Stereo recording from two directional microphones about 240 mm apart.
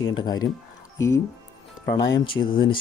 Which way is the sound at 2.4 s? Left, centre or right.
Centre.